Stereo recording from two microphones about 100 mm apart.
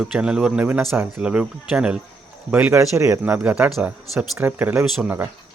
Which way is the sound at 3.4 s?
15° right (ahead or behind).